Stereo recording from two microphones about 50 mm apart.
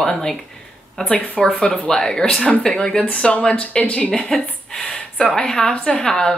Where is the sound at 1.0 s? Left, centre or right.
Centre.